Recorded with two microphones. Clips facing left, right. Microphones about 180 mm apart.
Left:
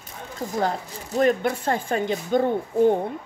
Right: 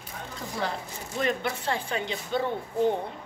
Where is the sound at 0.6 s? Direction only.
45° left (ahead or behind).